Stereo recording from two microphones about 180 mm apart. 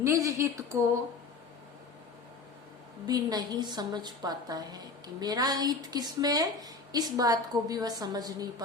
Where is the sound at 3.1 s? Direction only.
20° right (ahead or behind).